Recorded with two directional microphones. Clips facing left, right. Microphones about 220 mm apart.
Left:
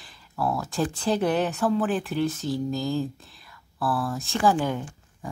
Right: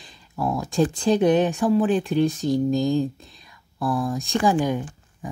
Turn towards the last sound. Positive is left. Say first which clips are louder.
# right 3 dB
turn(degrees=-15)  # may be behind; listen again after turning